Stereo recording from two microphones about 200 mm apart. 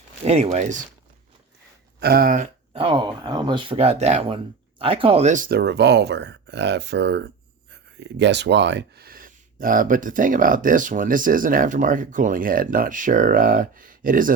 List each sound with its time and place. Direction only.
0.3 s speech: 35° right (ahead or behind)
2.0 s speech: 50° right (ahead or behind)
2.7 s speech: 25° right (ahead or behind); by 14.3 s 45° right (ahead or behind)